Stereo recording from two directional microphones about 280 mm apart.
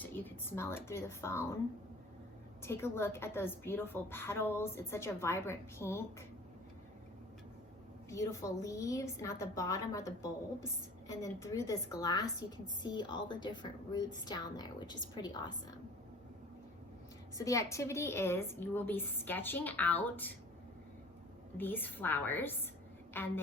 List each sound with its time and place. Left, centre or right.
0.0 s a woman's voice: centre
2.6 s a woman's voice: centre
8.1 s a woman's voice: centre
17.3 s a woman's voice: centre
21.6 s a woman's voice: centre